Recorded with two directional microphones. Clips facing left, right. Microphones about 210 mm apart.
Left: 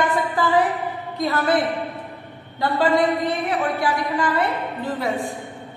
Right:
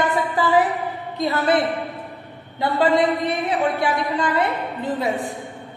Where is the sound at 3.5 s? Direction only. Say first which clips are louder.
Right 1 dB; 20° right (ahead or behind).